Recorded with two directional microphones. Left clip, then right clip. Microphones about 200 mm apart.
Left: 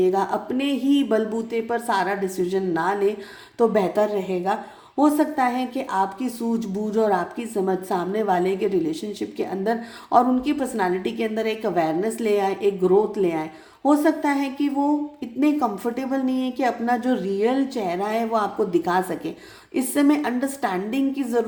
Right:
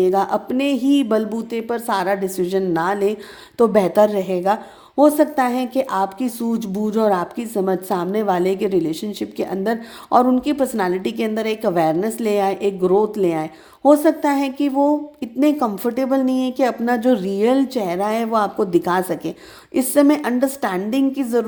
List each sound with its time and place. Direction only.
0.0 s a woman's voice: 35° right (ahead or behind)